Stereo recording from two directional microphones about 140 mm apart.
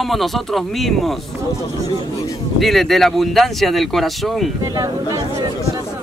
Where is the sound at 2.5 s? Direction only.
Centre (ahead or behind).